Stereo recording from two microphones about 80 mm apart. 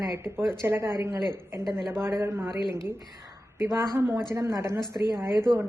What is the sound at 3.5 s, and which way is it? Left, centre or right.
Speech, right.